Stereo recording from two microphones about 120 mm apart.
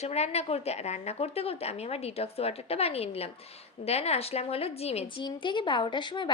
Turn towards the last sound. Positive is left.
turn(degrees=40)  # may be behind; listen again after turning